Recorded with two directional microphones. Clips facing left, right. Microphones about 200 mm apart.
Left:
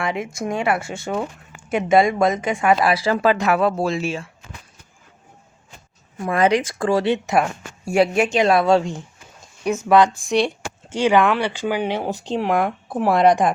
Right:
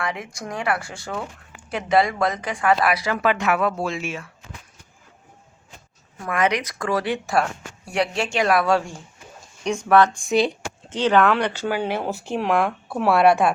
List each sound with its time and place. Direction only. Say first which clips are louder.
0.0 s speech: left 5 dB; 25° left (ahead or behind)
6.3 s speech: left 4 dB; 30° left (ahead or behind)
9.6 s speech: left 2 dB; 10° left (ahead or behind)
10.2 s speech: even; centre (ahead or behind)
10.8 s speech: left 1 dB; 10° left (ahead or behind)